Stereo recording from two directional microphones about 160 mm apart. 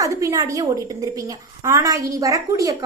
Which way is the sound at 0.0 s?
20° right (ahead or behind).